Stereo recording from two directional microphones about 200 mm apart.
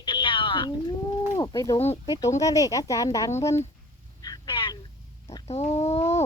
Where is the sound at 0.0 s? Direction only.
25° left (ahead or behind).